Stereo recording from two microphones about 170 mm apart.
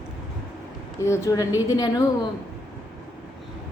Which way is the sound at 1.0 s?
15° left (ahead or behind).